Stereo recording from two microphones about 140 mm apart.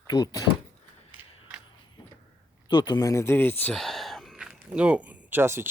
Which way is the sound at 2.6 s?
30° left (ahead or behind).